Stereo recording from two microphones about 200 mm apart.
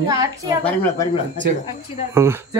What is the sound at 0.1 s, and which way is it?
Speech, 20° right (ahead or behind).